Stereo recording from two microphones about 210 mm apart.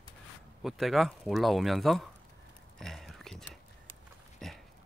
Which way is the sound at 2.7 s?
Centre (ahead or behind).